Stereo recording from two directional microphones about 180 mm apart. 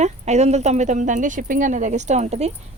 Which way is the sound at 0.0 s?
40° right (ahead or behind).